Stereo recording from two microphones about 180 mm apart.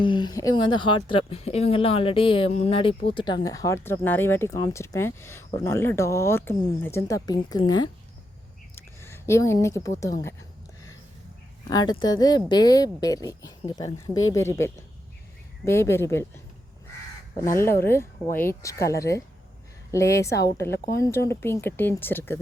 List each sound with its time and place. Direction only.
0.0 s a woman's voice: 25° left (ahead or behind)
8.7 s a sound: 15° left (ahead or behind)
10.0 s a woman's voice: 15° left (ahead or behind)
11.7 s a woman's voice: 25° left (ahead or behind)
17.4 s a woman's voice: 15° left (ahead or behind)